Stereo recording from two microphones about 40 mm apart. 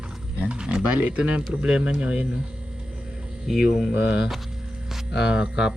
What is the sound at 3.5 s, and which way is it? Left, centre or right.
Speech, centre.